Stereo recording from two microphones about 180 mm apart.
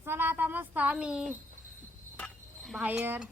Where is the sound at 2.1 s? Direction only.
5° left (ahead or behind).